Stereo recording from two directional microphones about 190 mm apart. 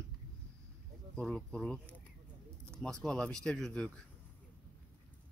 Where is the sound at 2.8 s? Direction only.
5° left (ahead or behind).